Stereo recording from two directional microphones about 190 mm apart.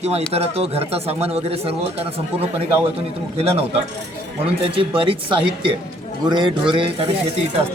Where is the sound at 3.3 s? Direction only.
30° right (ahead or behind).